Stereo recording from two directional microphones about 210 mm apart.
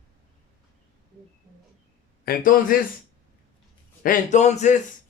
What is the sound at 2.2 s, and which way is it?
Speech, 45° left (ahead or behind).